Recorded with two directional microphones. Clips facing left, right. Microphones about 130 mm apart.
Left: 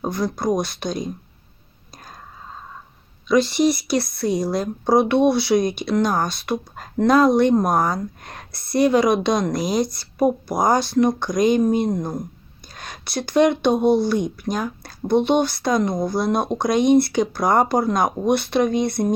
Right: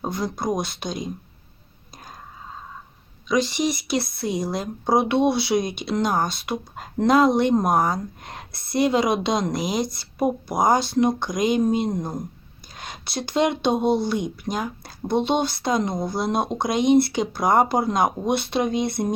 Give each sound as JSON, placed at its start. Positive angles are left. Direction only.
{"t": 0.0, "sound": "speech", "side_deg": -25}
{"t": 3.2, "sound": "speech", "side_deg": -15}